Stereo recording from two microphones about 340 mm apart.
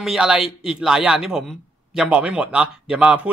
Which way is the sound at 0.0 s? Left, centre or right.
Centre.